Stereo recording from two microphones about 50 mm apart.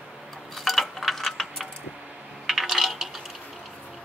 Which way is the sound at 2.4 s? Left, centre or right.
Centre.